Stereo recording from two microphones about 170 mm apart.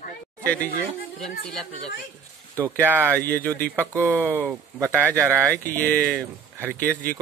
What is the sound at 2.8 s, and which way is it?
Speech, 10° right (ahead or behind).